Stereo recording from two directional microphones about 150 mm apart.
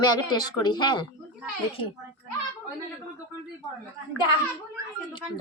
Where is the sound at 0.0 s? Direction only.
30° left (ahead or behind).